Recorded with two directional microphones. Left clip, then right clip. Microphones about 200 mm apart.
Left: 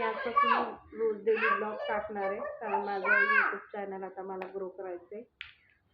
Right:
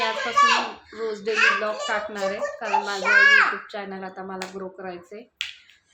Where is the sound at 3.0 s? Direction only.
55° right (ahead or behind).